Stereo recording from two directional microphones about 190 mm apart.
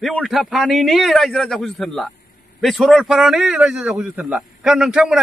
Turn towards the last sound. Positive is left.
turn(degrees=-5)  # may be behind; listen again after turning